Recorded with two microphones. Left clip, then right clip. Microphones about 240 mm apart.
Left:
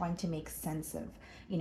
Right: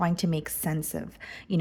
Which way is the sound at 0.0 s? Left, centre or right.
Right.